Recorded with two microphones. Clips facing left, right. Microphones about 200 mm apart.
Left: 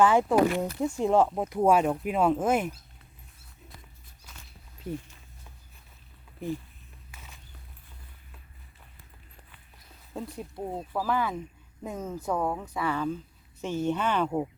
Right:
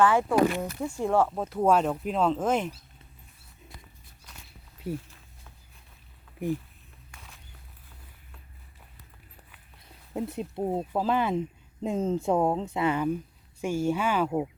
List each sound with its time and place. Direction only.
0.0 s speech: 15° left (ahead or behind)
4.8 s walk: 5° right (ahead or behind)
6.4 s speech: 15° right (ahead or behind)
7.1 s walk: centre (ahead or behind)
10.1 s speech: 20° right (ahead or behind)